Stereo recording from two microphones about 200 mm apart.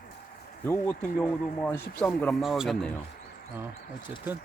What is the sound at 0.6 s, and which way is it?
Speech, 10° left (ahead or behind).